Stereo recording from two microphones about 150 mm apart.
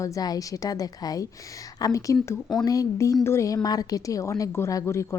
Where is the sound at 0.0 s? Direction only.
25° left (ahead or behind).